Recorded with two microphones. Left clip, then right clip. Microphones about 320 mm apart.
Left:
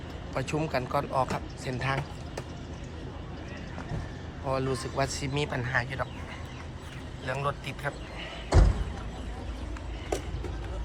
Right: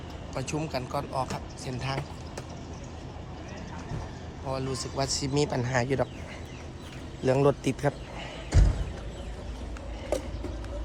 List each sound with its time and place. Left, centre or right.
0.3 s speech: centre
4.4 s speech: centre
7.3 s speech: right